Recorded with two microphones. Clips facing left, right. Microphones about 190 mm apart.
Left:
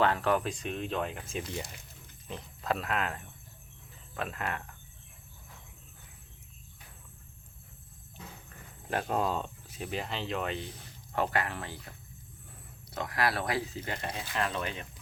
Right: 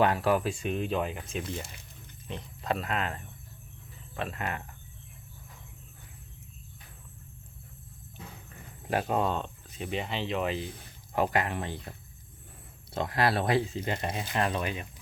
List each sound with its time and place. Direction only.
0.0 s speech: 10° right (ahead or behind)
8.9 s speech: 10° right (ahead or behind)
9.1 s speech: centre (ahead or behind)
11.1 s speech: 15° right (ahead or behind)